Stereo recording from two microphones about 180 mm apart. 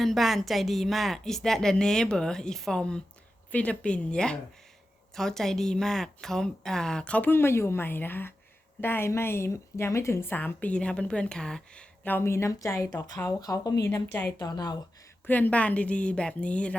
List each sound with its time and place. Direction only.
0.0 s a woman's voice: centre (ahead or behind)
14.3 s speech: 20° left (ahead or behind)
15.3 s a woman's voice: 10° left (ahead or behind)